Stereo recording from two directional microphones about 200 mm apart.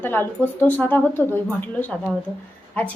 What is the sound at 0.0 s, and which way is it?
A woman's voice, 10° left (ahead or behind).